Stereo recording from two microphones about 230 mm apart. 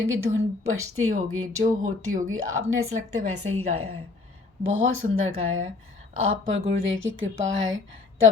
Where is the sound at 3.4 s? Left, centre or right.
Right.